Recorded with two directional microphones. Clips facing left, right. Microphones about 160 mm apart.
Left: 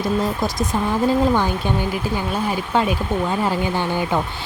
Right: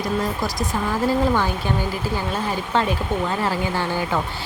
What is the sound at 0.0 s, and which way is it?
Speech, 20° left (ahead or behind).